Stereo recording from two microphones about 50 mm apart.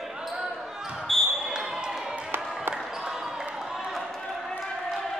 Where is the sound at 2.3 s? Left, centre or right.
Right.